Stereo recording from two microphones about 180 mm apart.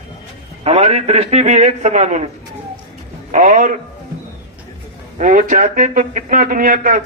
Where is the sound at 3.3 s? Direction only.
45° right (ahead or behind).